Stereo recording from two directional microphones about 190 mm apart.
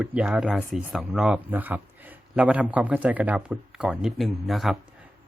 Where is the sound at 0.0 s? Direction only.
5° right (ahead or behind).